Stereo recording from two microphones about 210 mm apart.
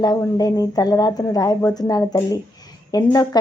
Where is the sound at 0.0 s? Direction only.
20° left (ahead or behind).